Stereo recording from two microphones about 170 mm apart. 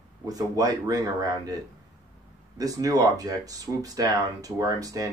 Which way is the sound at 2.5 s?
20° right (ahead or behind).